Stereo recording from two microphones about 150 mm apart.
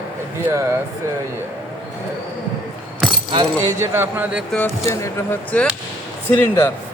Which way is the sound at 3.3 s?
30° right (ahead or behind).